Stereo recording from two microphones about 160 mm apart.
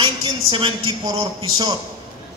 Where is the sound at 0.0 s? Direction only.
30° right (ahead or behind).